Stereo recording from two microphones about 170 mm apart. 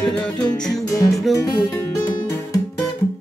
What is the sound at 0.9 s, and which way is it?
Music, 20° left (ahead or behind).